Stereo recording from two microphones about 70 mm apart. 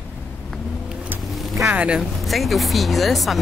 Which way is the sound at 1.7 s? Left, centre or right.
Centre.